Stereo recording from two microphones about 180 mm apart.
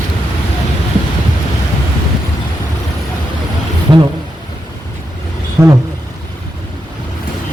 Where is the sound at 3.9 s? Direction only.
25° right (ahead or behind).